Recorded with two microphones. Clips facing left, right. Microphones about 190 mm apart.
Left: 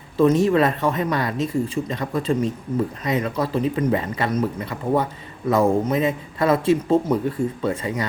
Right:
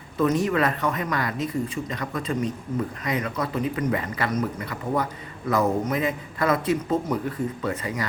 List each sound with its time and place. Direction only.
0.2 s speech: 25° left (ahead or behind)